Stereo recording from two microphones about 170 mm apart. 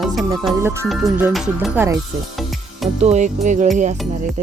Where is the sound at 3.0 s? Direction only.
40° right (ahead or behind).